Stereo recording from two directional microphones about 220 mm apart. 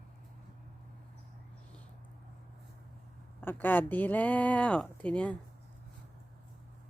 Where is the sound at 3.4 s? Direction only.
10° left (ahead or behind).